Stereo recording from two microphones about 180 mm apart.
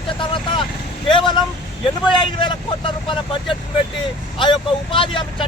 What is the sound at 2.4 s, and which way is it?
Speech, 25° left (ahead or behind).